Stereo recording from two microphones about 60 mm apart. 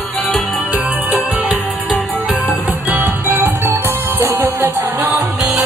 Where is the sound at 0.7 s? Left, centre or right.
Right.